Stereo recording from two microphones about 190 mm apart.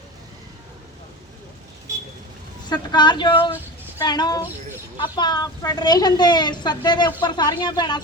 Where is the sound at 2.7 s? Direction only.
25° left (ahead or behind).